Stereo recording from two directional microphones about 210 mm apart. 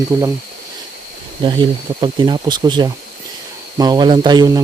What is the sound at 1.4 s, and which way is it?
Speech, 20° right (ahead or behind).